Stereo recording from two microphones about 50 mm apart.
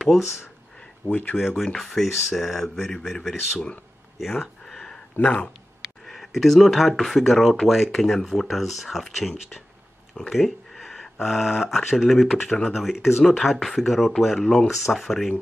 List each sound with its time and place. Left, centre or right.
0.0 s speech: centre
1.0 s speech: left
1.8 s speech: centre
4.4 s a sound: centre
5.1 s speech: left
6.0 s speech: centre